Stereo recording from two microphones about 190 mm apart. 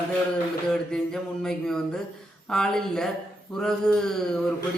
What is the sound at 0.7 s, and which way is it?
Speech, 5° left (ahead or behind).